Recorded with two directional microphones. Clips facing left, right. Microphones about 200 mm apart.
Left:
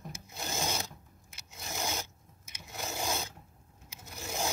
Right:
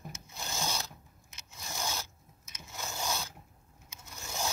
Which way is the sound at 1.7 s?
20° left (ahead or behind).